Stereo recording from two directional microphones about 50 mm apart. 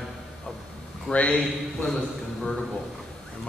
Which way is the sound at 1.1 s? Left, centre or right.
Left.